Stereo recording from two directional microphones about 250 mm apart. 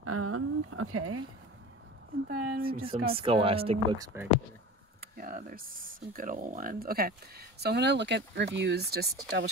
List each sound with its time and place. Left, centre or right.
0.0 s speech: right
2.2 s speech: right
3.1 s speech: right
5.1 s speech: right